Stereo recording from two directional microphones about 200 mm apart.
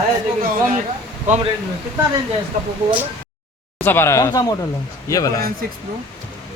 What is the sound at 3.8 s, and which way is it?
Speech, 10° left (ahead or behind).